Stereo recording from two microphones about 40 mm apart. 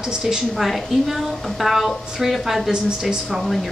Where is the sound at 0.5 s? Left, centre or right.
Centre.